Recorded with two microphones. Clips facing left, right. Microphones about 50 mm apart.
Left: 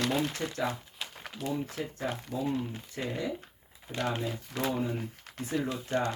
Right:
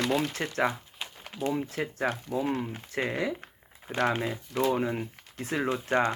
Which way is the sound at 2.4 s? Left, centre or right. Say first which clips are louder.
Even; right.